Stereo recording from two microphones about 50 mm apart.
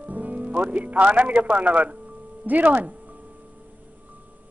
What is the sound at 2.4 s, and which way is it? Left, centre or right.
Speech, right.